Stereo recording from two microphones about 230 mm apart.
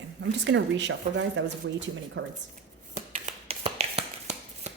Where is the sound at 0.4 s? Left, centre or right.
Right.